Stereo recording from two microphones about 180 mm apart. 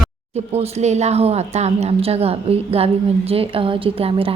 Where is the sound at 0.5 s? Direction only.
35° right (ahead or behind).